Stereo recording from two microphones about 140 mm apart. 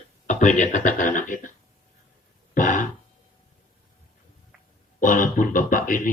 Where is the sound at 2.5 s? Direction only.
70° left (ahead or behind).